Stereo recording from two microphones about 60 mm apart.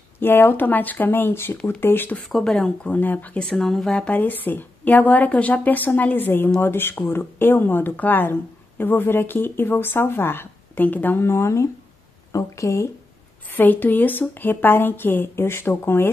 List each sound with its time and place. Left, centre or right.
0.2 s speech: left
2.2 s speech: centre
2.5 s a woman's voice: centre
3.3 s speech: centre
3.9 s a woman's voice: centre
4.2 s a woman's voice: left
11.1 s speech: left
13.5 s speech: left